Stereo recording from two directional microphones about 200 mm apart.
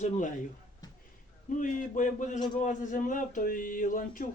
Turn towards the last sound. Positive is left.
turn(degrees=45)  # may be behind; listen again after turning